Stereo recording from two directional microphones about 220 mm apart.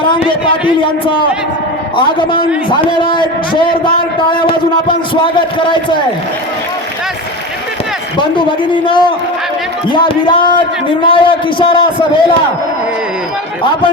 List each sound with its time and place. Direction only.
0.0 s a man's voice: 25° left (ahead or behind)
8.2 s a man's voice: 20° left (ahead or behind)